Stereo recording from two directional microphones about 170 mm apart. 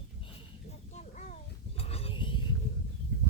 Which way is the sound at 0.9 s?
45° left (ahead or behind).